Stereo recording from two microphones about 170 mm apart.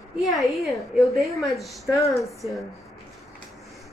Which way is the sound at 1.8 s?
20° left (ahead or behind).